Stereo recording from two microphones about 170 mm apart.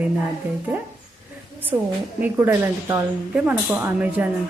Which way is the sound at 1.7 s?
25° right (ahead or behind).